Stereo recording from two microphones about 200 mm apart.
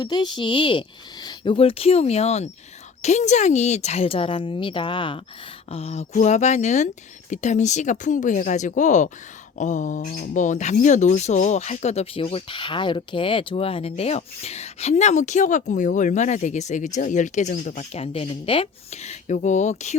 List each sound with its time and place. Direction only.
0.0 s speech: 20° left (ahead or behind)